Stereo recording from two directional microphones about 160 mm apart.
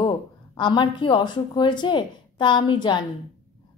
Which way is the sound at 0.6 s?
30° left (ahead or behind).